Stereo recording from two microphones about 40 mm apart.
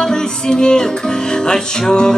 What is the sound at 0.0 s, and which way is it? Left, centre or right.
Music, centre.